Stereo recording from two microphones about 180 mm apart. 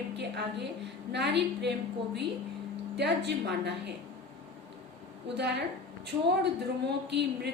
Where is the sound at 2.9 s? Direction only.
70° right (ahead or behind).